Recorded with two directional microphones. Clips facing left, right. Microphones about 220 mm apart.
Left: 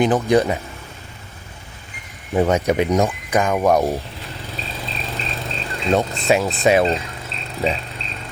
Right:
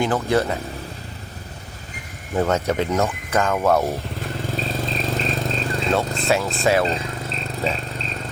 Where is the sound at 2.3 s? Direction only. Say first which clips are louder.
Left 3 dB; 15° left (ahead or behind).